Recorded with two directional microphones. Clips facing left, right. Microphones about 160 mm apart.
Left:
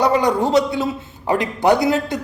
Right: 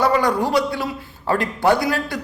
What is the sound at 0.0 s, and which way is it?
A man's voice, 20° left (ahead or behind).